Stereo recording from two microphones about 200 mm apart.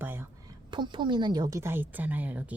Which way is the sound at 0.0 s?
10° right (ahead or behind).